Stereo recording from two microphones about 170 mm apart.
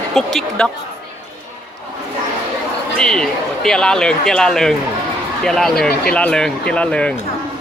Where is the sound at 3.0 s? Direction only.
5° left (ahead or behind).